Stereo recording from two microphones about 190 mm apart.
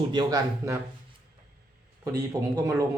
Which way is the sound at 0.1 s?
20° right (ahead or behind).